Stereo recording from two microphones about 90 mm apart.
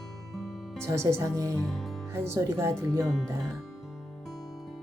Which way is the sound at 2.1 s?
30° right (ahead or behind).